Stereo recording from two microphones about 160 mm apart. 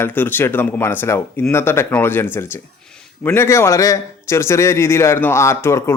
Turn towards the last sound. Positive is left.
turn(degrees=15)  # may be behind; listen again after turning